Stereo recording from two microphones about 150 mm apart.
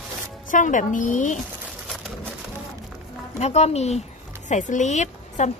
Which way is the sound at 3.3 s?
45° left (ahead or behind).